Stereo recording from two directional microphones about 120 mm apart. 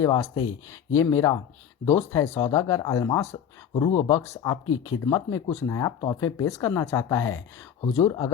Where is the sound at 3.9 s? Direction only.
40° left (ahead or behind).